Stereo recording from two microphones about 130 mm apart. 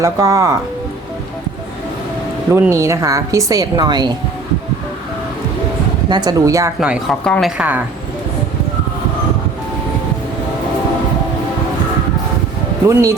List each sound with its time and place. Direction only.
0.0 s speech: 25° right (ahead or behind)
2.5 s speech: 20° right (ahead or behind)
6.1 s speech: 30° right (ahead or behind)
6.7 s speech: 10° right (ahead or behind)
7.1 s speech: 5° left (ahead or behind)
12.9 s speech: 25° right (ahead or behind)